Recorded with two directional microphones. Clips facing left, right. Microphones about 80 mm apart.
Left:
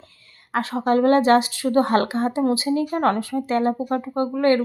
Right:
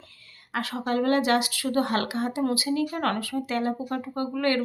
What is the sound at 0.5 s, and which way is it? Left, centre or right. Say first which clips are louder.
Speech: left 7 dB; left.